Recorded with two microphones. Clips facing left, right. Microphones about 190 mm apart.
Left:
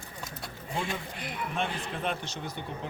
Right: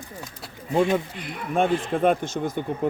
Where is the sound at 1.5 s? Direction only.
50° right (ahead or behind).